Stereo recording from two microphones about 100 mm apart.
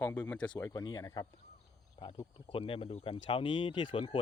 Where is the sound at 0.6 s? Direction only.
40° left (ahead or behind).